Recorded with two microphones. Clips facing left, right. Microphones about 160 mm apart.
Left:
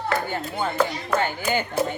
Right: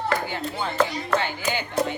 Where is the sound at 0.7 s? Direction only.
5° left (ahead or behind).